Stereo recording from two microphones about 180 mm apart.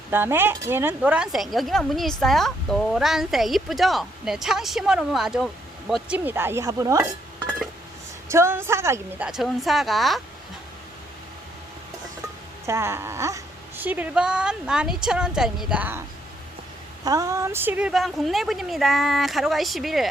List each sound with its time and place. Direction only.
0.1 s speech: 10° right (ahead or behind)
8.3 s speech: 15° right (ahead or behind)
12.6 s speech: 15° right (ahead or behind)